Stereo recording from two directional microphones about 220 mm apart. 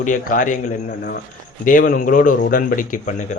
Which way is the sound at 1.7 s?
40° left (ahead or behind).